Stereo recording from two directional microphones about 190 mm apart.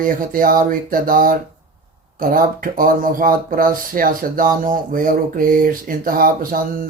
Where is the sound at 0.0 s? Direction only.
45° right (ahead or behind).